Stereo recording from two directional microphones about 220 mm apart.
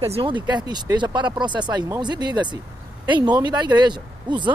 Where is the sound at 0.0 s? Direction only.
25° right (ahead or behind).